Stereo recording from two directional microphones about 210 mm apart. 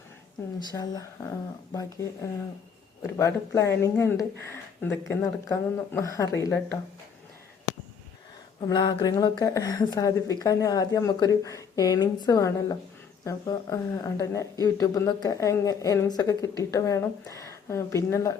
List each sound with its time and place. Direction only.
0.7 s speech: 20° left (ahead or behind)
8.6 s speech: 20° left (ahead or behind)